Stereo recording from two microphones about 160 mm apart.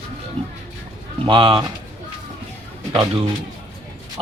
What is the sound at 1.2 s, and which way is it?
Speech, 30° right (ahead or behind).